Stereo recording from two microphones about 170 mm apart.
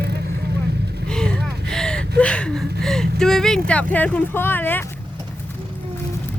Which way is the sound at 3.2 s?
5° left (ahead or behind).